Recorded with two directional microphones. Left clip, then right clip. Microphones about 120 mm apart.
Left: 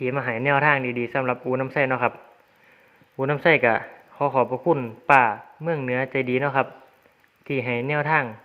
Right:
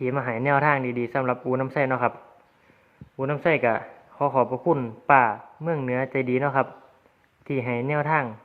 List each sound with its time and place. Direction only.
0.0 s speech: 15° left (ahead or behind)
3.2 s speech: 30° left (ahead or behind)